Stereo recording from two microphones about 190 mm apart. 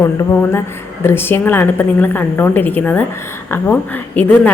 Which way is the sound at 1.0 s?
10° left (ahead or behind).